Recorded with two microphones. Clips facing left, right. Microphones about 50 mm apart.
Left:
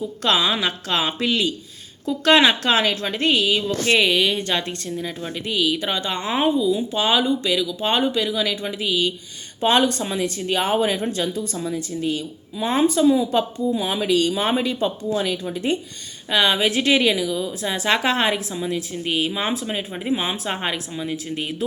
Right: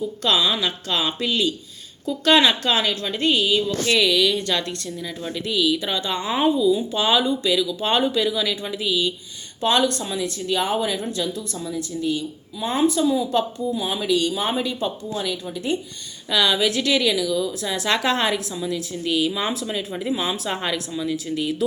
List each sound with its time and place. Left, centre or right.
0.2 s a woman's voice: left
3.8 s a woman's voice: left
6.2 s a woman's voice: left
7.4 s a woman's voice: left
7.8 s a woman's voice: centre; by 13.8 s left
13.8 s speech: left
16.3 s a woman's voice: left